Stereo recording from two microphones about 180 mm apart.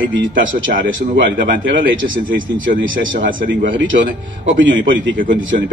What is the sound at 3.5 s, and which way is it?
A man's voice, 90° right.